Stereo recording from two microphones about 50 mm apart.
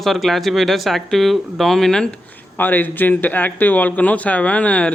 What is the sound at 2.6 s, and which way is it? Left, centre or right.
Speech, left.